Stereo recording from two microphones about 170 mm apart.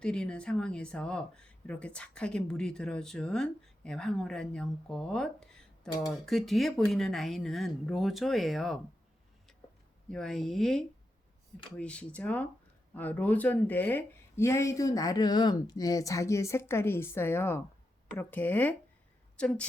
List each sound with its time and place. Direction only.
0.0 s speech: 5° left (ahead or behind)
10.1 s speech: centre (ahead or behind)